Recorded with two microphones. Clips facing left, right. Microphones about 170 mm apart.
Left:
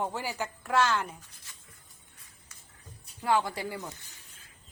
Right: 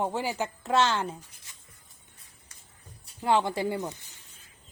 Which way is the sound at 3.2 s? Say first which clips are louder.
Right 3 dB; 25° right (ahead or behind).